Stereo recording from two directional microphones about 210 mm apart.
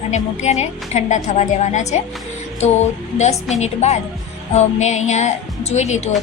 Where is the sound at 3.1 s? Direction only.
35° left (ahead or behind).